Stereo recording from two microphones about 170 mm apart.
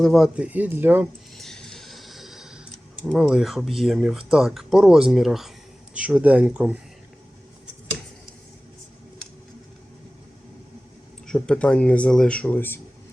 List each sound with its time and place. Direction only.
0.0 s speech: centre (ahead or behind)
1.4 s a sound: 5° left (ahead or behind)
3.8 s speech: centre (ahead or behind)
11.3 s speech: 5° left (ahead or behind)